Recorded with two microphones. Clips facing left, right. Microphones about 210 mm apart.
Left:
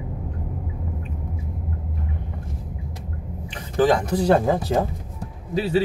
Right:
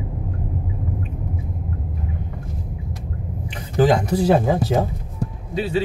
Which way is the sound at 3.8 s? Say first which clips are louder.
Right 2 dB; 10° right (ahead or behind).